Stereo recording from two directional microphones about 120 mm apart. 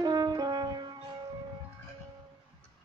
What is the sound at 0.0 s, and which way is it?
French horn, 30° right (ahead or behind).